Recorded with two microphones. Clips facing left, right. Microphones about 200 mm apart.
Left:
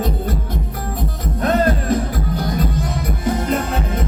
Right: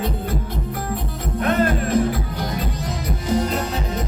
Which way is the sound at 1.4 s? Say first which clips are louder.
Left 3 dB; 40° left (ahead or behind).